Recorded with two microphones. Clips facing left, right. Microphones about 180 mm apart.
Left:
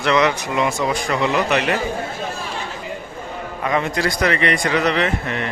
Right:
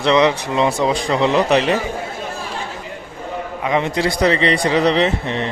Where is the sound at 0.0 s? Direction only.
25° right (ahead or behind).